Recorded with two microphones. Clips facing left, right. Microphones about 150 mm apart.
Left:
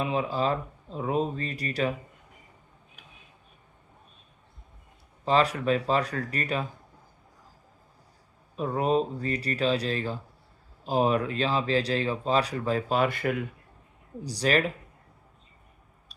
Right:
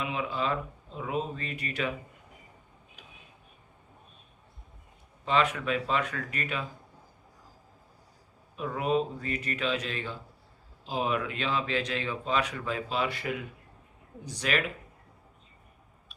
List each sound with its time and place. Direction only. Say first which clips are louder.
0.0 s speech: left 5 dB; 35° left (ahead or behind)
5.2 s speech: left 3 dB; 35° left (ahead or behind)
8.5 s speech: left 3 dB; 35° left (ahead or behind); by 13.3 s 50° left (ahead or behind)
14.3 s speech: left 5 dB; 35° left (ahead or behind)